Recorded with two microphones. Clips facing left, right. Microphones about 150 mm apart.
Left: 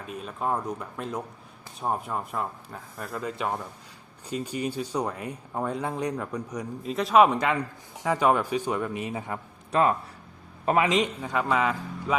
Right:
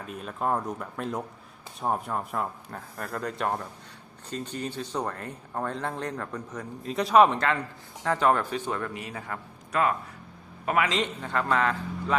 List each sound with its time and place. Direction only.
0.0 s speech: centre (ahead or behind)
6.8 s speech: centre (ahead or behind)
7.3 s a man's voice: 15° left (ahead or behind)
10.9 s speech: 10° left (ahead or behind)